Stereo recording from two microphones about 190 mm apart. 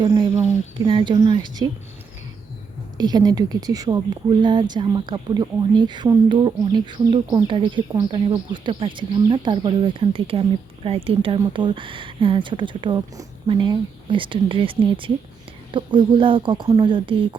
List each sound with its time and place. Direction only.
0.0 s speech: 25° right (ahead or behind)
3.0 s speech: 20° right (ahead or behind)